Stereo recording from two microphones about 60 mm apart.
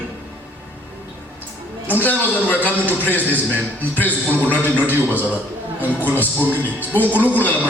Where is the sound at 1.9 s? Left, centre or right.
Left.